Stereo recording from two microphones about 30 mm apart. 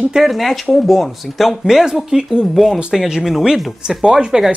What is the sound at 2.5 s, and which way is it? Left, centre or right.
Speech, centre.